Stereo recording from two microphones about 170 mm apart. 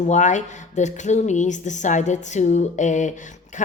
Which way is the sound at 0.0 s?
45° left (ahead or behind).